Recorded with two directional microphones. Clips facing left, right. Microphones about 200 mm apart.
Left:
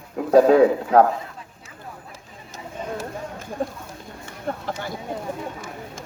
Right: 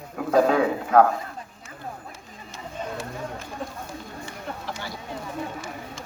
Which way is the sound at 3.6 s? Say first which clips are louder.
Left 5 dB; 40° left (ahead or behind).